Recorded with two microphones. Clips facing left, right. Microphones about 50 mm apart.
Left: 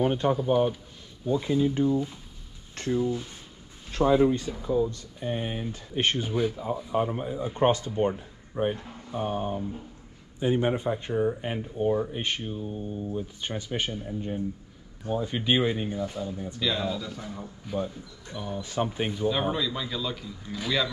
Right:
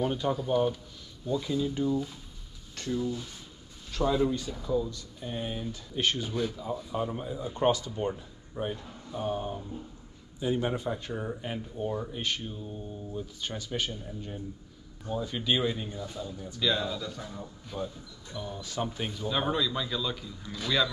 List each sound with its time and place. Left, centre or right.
0.0 s speech: left
0.4 s speech: centre
1.2 s a man's voice: left
16.5 s speech: centre
19.2 s speech: centre